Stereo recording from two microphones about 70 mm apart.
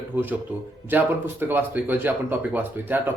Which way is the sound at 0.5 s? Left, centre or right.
Right.